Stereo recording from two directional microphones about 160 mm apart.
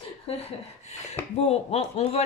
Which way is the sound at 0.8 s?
45° left (ahead or behind).